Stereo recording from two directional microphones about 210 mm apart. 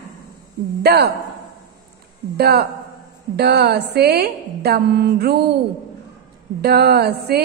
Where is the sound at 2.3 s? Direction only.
50° right (ahead or behind).